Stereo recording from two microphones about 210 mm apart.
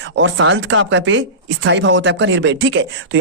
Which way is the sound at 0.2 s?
65° right (ahead or behind).